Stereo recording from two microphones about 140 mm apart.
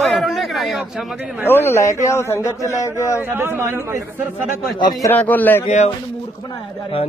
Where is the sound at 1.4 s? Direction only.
15° left (ahead or behind).